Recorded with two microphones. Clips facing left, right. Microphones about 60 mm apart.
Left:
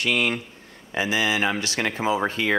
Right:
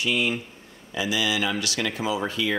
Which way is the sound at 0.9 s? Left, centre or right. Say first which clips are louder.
Left 2 dB; left.